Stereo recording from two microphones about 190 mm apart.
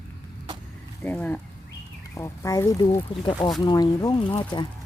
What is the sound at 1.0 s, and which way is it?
Speech, 10° left (ahead or behind).